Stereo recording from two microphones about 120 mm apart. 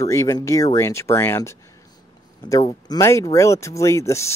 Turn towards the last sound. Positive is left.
turn(degrees=25)  # may be behind; listen again after turning